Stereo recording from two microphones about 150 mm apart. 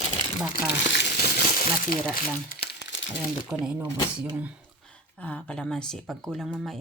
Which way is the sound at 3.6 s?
5° right (ahead or behind).